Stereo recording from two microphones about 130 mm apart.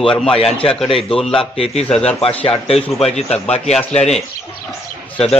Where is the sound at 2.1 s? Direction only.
45° left (ahead or behind).